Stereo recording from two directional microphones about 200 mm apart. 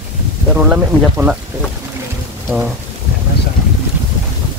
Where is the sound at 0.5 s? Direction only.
5° right (ahead or behind).